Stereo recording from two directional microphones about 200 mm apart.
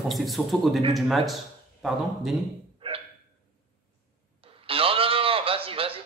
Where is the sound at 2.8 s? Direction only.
25° right (ahead or behind).